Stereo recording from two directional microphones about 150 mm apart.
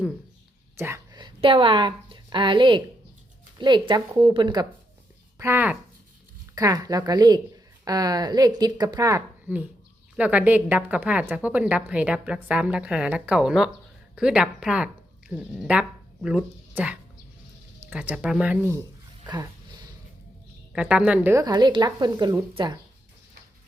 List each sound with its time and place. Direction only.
0.8 s speech: 15° right (ahead or behind)
1.1 s speech: 30° right (ahead or behind)
5.4 s speech: 15° right (ahead or behind)
10.2 s a woman's voice: 10° right (ahead or behind)
20.7 s a woman's voice: 5° right (ahead or behind)
21.3 s speech: 25° right (ahead or behind)